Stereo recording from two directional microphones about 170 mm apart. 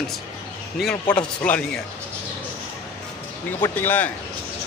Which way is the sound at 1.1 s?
5° left (ahead or behind).